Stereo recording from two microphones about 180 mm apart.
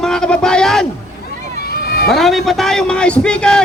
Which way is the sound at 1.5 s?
60° left (ahead or behind).